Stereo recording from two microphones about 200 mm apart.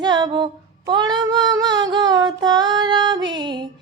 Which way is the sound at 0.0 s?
20° right (ahead or behind).